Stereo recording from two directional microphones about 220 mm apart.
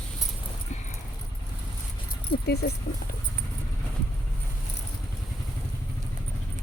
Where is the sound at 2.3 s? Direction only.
45° left (ahead or behind).